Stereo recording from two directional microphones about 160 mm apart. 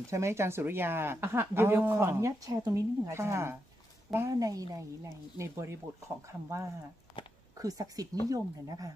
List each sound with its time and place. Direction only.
0.1 s a woman's voice: 15° right (ahead or behind)
7.2 s speech: 35° left (ahead or behind)
7.5 s a woman's voice: 20° right (ahead or behind)